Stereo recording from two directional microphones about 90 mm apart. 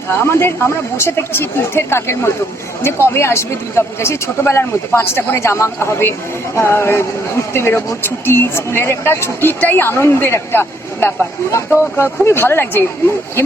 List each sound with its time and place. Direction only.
0.3 s speech: 30° left (ahead or behind)